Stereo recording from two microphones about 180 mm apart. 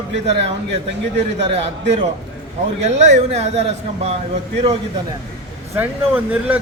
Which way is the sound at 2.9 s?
40° right (ahead or behind).